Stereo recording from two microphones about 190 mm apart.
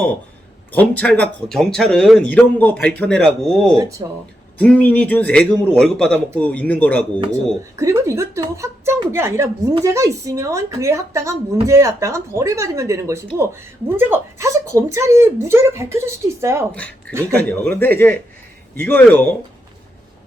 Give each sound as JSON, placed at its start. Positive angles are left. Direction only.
{"t": 0.7, "sound": "speech", "side_deg": 10}
{"t": 3.8, "sound": "speech", "side_deg": -15}
{"t": 4.5, "sound": "a man's voice", "side_deg": 10}
{"t": 7.8, "sound": "speech", "side_deg": -15}
{"t": 17.3, "sound": "a man's voice", "side_deg": 10}